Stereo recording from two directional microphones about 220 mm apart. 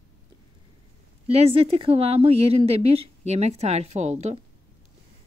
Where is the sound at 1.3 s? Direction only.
25° right (ahead or behind).